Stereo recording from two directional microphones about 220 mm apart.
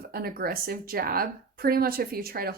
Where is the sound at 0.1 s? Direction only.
45° right (ahead or behind).